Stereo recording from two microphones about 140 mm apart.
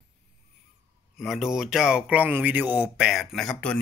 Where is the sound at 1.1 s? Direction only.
Centre (ahead or behind).